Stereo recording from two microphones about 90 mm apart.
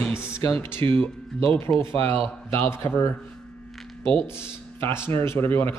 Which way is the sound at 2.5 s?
25° left (ahead or behind).